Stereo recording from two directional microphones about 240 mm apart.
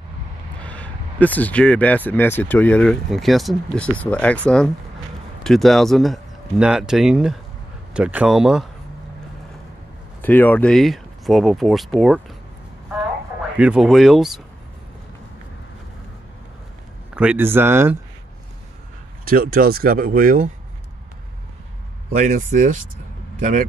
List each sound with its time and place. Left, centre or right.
0.6 s speech: centre
10.2 s speech: centre
13.6 s speech: centre
17.1 s speech: centre
19.2 s speech: right
22.1 s speech: right